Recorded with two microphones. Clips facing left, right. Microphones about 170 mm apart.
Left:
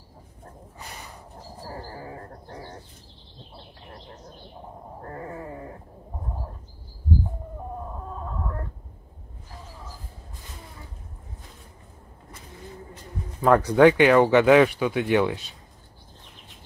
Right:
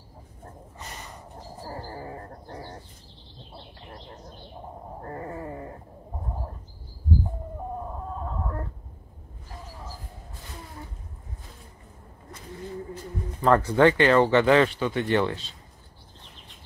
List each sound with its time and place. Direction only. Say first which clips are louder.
0.7 s gasp: even; 10° left (ahead or behind)
2.0 s bird: right 1 dB; 5° right (ahead or behind)
13.4 s speech: left 3 dB; 15° left (ahead or behind)